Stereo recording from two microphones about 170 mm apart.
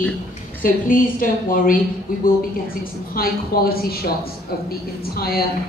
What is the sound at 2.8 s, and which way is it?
A woman's voice, 60° left (ahead or behind).